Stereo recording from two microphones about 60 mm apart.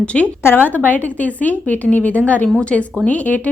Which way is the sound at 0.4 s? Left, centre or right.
Left.